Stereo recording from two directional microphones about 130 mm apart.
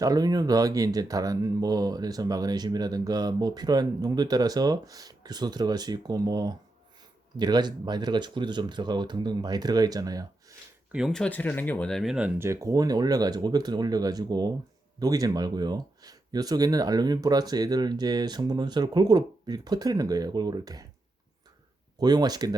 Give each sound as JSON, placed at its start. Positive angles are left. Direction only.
{"t": 0.0, "sound": "speech", "side_deg": -30}
{"t": 10.9, "sound": "speech", "side_deg": -5}
{"t": 11.2, "sound": "speech", "side_deg": 10}
{"t": 12.4, "sound": "speech", "side_deg": -25}
{"t": 21.9, "sound": "speech", "side_deg": -30}